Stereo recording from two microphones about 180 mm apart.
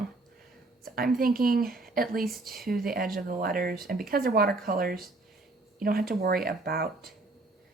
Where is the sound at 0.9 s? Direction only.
55° right (ahead or behind).